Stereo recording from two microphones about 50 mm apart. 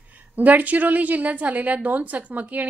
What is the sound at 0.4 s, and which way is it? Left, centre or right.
A woman's voice, right.